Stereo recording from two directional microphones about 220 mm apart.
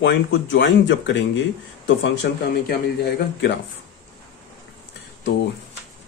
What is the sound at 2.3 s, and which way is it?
Speech, 50° left (ahead or behind).